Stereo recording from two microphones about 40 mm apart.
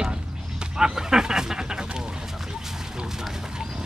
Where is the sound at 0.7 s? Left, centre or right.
Centre.